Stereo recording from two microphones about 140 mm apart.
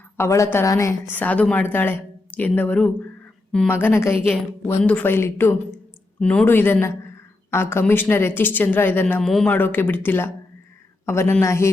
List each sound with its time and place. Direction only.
0.2 s a woman's voice: 20° left (ahead or behind)
1.1 s speech: 10° left (ahead or behind)
9.2 s a man's voice: 5° left (ahead or behind)
9.6 s a woman's voice: 15° left (ahead or behind)